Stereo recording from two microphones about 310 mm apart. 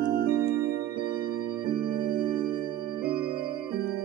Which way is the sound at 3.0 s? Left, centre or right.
Right.